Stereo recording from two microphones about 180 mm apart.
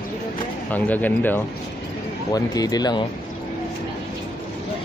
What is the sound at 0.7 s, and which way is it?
Speech, 10° left (ahead or behind).